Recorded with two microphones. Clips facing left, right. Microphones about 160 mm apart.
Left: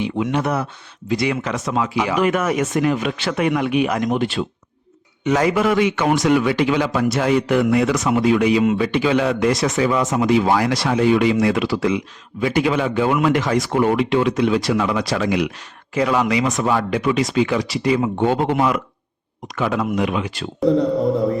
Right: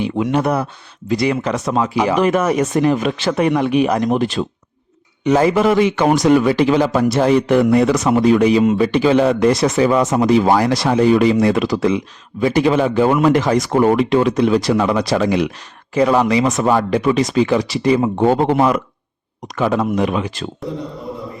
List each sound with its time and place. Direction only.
0.0 s a man's voice: 40° right (ahead or behind)